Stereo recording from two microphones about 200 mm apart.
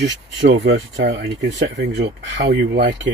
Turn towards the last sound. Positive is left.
turn(degrees=-60)  # may be behind; listen again after turning